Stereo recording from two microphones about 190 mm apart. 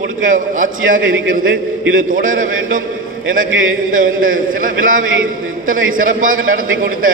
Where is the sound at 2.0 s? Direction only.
45° right (ahead or behind).